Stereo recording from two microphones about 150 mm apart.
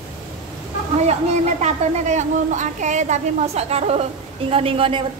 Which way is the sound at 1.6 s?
55° right (ahead or behind).